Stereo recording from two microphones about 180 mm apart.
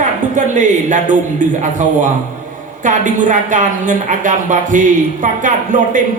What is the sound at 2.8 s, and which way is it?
A woman's voice, 45° right (ahead or behind).